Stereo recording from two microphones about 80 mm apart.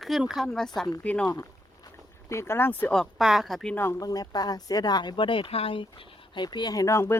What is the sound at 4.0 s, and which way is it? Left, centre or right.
Speech, left.